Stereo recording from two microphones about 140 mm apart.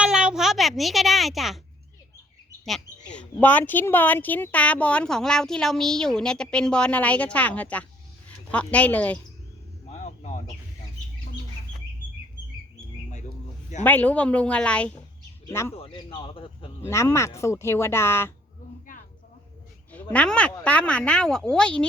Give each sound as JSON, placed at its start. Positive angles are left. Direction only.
{"t": 0.0, "sound": "a sound", "side_deg": -5}
{"t": 3.1, "sound": "speech", "side_deg": 10}
{"t": 9.9, "sound": "a sound", "side_deg": 55}
{"t": 13.8, "sound": "speech", "side_deg": 10}
{"t": 15.4, "sound": "speech", "side_deg": 20}
{"t": 15.7, "sound": "speech", "side_deg": 40}
{"t": 16.8, "sound": "speech", "side_deg": 20}
{"t": 20.1, "sound": "speech", "side_deg": 10}